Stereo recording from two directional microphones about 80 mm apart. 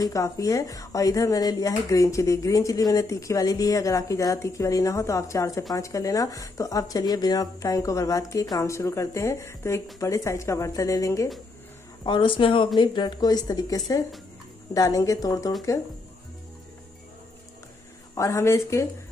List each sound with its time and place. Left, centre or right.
0.0 s speech: left
12.0 s speech: left
12.7 s speech: left
18.1 s speech: left